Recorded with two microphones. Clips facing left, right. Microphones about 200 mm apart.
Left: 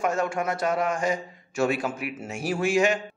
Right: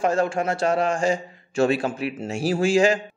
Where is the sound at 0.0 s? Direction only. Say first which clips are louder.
Right 4 dB; 30° right (ahead or behind).